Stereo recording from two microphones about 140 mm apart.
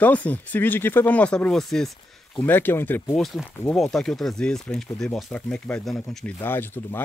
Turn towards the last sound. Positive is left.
turn(degrees=15)  # may be behind; listen again after turning